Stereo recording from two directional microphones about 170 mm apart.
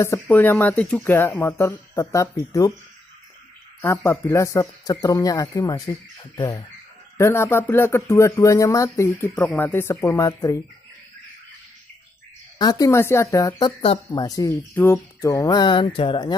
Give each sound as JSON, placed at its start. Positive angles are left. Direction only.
{"t": 0.0, "sound": "speech", "side_deg": 15}
{"t": 3.8, "sound": "speech", "side_deg": 15}
{"t": 12.5, "sound": "speech", "side_deg": 20}